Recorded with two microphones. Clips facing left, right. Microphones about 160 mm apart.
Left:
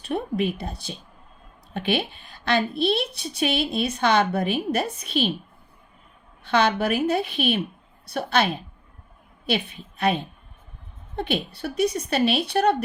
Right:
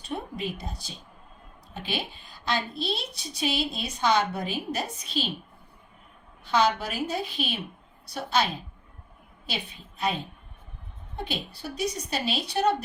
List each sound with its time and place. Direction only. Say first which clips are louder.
0.1 s a woman's voice: left 8 dB; 60° left (ahead or behind)
6.4 s a woman's voice: left 3 dB; 60° left (ahead or behind)
11.3 s a woman's voice: left 8 dB; 60° left (ahead or behind)